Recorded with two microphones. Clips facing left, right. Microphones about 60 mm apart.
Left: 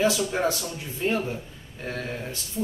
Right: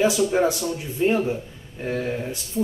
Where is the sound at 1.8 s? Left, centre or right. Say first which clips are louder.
Right 6 dB; centre.